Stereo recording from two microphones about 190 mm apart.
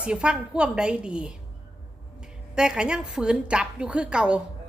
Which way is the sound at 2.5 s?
5° right (ahead or behind).